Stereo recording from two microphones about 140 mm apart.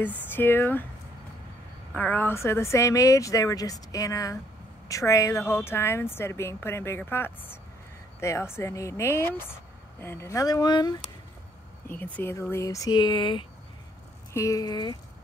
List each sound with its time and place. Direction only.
0.0 s speech: 15° left (ahead or behind)
2.0 s speech: 10° left (ahead or behind); by 11.0 s 30° left (ahead or behind)
11.9 s speech: 15° left (ahead or behind); by 13.5 s 35° left (ahead or behind)
14.3 s speech: 25° left (ahead or behind)